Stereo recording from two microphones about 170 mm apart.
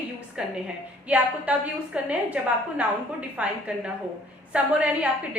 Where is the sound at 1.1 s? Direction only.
10° right (ahead or behind).